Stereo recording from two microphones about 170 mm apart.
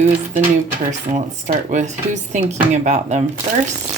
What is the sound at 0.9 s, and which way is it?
Speech, 45° right (ahead or behind).